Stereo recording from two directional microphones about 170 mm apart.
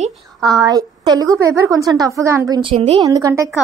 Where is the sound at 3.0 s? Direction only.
20° right (ahead or behind).